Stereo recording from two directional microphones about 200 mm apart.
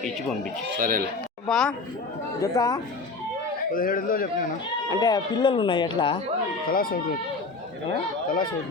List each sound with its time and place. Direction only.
0.8 s speech: 45° right (ahead or behind)
1.5 s speech: centre (ahead or behind)
2.4 s speech: 20° left (ahead or behind)
3.7 s a man's voice: 45° left (ahead or behind)
4.9 s speech: 20° left (ahead or behind)
6.7 s a man's voice: 45° left (ahead or behind)